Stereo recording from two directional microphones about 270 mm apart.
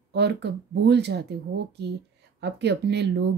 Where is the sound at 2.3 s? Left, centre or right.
Right.